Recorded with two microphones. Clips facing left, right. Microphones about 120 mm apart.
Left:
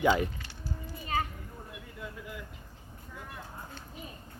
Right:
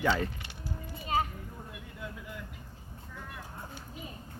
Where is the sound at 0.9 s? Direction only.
20° right (ahead or behind).